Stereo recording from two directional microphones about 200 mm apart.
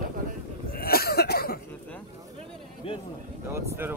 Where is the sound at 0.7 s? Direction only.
50° left (ahead or behind).